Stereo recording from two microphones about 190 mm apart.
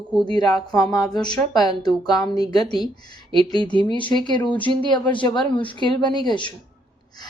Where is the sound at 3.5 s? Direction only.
20° left (ahead or behind).